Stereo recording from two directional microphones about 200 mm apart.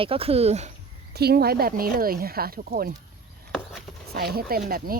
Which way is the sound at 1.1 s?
55° right (ahead or behind).